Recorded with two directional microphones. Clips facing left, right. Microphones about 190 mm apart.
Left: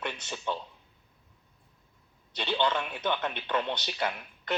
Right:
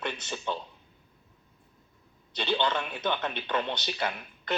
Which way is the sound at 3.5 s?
10° left (ahead or behind).